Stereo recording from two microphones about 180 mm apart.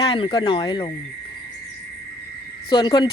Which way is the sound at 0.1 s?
25° left (ahead or behind).